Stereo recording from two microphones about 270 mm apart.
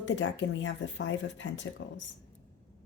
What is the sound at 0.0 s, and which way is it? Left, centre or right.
Speech, left.